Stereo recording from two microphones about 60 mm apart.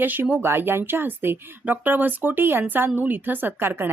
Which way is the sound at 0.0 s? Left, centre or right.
Right.